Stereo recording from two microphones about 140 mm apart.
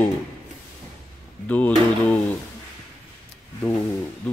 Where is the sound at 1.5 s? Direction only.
10° left (ahead or behind).